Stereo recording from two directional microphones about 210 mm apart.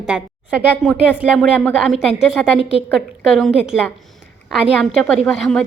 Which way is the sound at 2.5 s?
30° left (ahead or behind).